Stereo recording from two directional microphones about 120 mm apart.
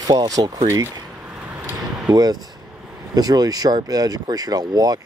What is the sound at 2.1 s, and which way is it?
Speech, 35° right (ahead or behind).